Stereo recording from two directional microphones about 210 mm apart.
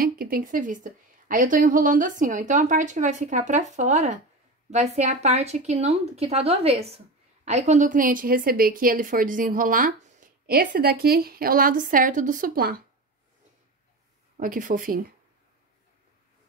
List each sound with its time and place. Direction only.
0.0 s a woman's voice: 45° right (ahead or behind)
14.3 s a woman's voice: 40° right (ahead or behind)